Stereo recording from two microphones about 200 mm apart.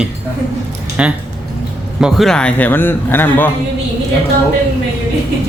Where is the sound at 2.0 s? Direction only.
Centre (ahead or behind).